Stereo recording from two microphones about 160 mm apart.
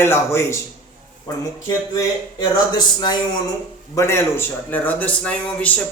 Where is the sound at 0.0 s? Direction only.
15° left (ahead or behind).